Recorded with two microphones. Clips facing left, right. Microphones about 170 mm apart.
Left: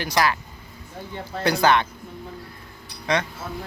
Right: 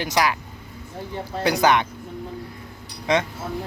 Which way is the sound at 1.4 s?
15° right (ahead or behind).